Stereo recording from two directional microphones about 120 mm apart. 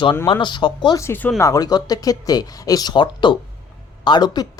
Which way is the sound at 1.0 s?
20° left (ahead or behind).